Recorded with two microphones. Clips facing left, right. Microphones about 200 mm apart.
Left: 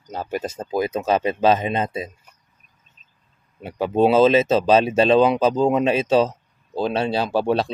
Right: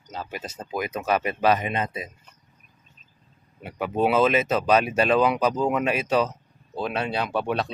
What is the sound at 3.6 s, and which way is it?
Speech, 30° left (ahead or behind).